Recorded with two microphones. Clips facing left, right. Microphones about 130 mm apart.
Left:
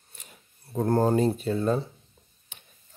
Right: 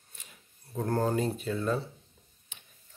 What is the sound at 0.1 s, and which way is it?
Speech, 40° left (ahead or behind).